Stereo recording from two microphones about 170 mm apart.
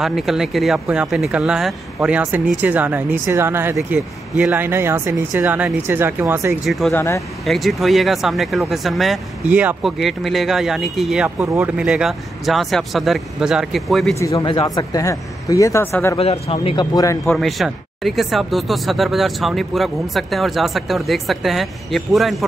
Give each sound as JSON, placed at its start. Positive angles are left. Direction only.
{"t": 0.0, "sound": "speech", "side_deg": 0}
{"t": 6.6, "sound": "speech", "side_deg": 0}
{"t": 6.9, "sound": "speech", "side_deg": 15}
{"t": 7.4, "sound": "speech", "side_deg": 0}
{"t": 14.2, "sound": "speech", "side_deg": 25}
{"t": 16.2, "sound": "speech", "side_deg": 35}
{"t": 17.3, "sound": "speech", "side_deg": 0}